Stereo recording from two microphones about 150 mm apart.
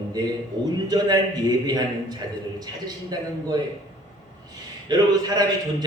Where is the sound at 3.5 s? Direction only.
25° right (ahead or behind).